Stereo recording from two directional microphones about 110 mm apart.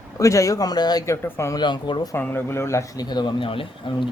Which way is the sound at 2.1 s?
20° left (ahead or behind).